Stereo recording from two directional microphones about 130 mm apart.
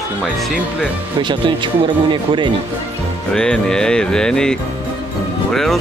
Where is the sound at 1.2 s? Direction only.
40° right (ahead or behind).